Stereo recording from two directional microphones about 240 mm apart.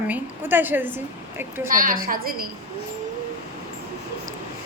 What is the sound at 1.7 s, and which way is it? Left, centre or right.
Speech, right.